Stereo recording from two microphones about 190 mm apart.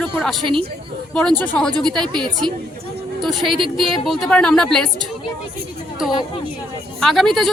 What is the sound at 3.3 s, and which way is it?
Speech, centre (ahead or behind).